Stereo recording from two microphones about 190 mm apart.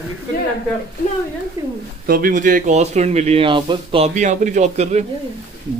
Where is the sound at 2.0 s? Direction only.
50° right (ahead or behind).